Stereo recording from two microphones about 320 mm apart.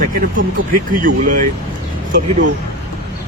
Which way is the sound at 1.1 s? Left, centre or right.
Right.